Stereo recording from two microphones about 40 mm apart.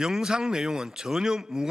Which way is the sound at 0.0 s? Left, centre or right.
Centre.